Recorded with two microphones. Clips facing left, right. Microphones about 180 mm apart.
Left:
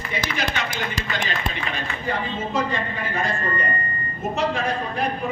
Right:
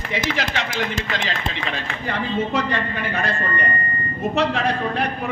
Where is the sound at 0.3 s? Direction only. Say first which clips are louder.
Right 1 dB; 90° right.